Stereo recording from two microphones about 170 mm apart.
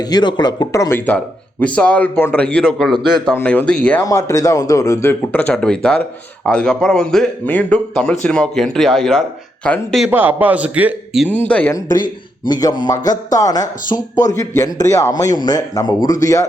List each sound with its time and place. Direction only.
0.0 s a man's voice: 25° left (ahead or behind); by 4.0 s 5° left (ahead or behind)
4.0 s a man's voice: 20° left (ahead or behind)
10.1 s a man's voice: 10° right (ahead or behind)
11.3 s a man's voice: 10° left (ahead or behind)
12.5 s speech: 20° left (ahead or behind)